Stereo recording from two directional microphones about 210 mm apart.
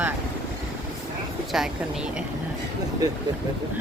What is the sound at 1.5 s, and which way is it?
Speech, centre (ahead or behind).